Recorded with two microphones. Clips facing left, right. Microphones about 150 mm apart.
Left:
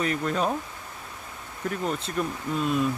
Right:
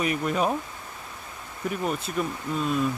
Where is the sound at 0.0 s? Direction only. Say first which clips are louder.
Right 1 dB; 10° right (ahead or behind).